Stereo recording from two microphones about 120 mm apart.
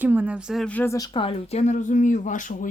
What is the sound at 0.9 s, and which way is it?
Speech, 30° left (ahead or behind).